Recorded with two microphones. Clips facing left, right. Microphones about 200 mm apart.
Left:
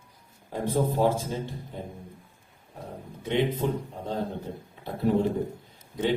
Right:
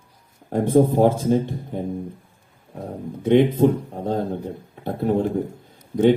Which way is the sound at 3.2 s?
55° right (ahead or behind).